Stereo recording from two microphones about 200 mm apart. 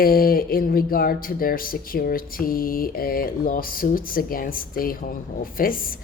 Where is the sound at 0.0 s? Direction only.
45° left (ahead or behind).